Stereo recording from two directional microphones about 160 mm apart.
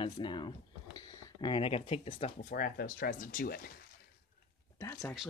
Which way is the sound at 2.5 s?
65° left (ahead or behind).